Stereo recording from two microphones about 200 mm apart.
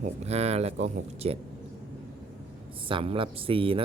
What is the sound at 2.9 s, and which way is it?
Speech, 25° right (ahead or behind).